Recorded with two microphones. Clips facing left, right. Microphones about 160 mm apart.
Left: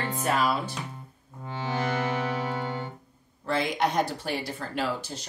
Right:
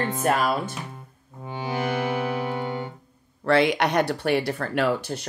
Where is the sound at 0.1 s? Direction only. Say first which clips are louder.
Even; 50° right (ahead or behind).